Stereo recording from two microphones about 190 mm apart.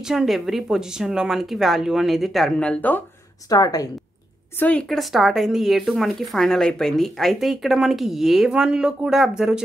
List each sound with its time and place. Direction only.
0.1 s speech: centre (ahead or behind)
3.4 s a woman's voice: 20° left (ahead or behind)
4.6 s speech: 5° left (ahead or behind)